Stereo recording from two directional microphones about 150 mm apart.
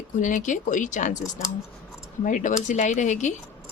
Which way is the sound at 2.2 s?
55° left (ahead or behind).